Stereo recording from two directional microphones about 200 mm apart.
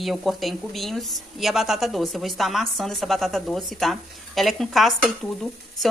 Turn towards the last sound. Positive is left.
turn(degrees=0)  # may be behind; listen again after turning